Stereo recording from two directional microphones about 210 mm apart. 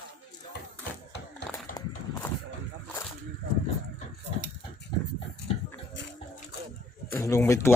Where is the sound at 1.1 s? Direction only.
55° left (ahead or behind).